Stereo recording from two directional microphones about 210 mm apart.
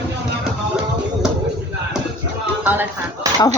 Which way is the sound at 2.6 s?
10° right (ahead or behind).